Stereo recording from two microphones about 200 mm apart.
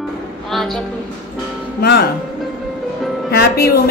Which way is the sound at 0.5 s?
Centre (ahead or behind).